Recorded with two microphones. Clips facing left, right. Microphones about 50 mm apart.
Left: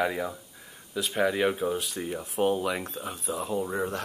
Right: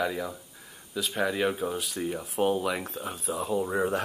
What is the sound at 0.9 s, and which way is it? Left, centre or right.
Speech, centre.